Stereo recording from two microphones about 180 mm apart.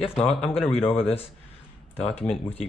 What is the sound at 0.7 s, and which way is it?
Speech, 30° left (ahead or behind).